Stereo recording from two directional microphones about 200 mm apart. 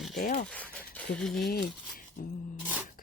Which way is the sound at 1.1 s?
Centre (ahead or behind).